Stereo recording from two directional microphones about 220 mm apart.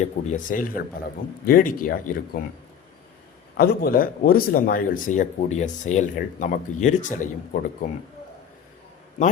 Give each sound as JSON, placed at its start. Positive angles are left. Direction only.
{"t": 0.3, "sound": "speech", "side_deg": 35}
{"t": 3.6, "sound": "speech", "side_deg": 40}